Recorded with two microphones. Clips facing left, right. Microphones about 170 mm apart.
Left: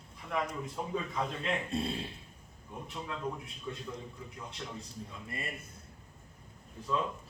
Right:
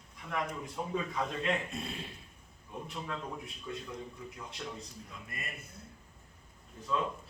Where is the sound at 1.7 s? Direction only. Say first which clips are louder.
Left 7 dB; 30° left (ahead or behind).